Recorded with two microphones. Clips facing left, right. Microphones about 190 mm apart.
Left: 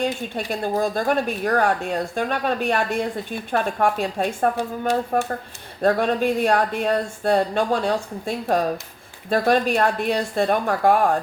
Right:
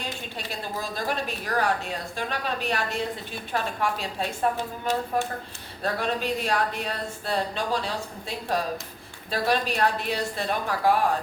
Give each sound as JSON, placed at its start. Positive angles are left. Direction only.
{"t": 0.0, "sound": "speech", "side_deg": 50}